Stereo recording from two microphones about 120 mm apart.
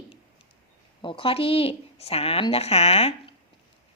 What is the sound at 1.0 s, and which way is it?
A woman's voice, 45° left (ahead or behind).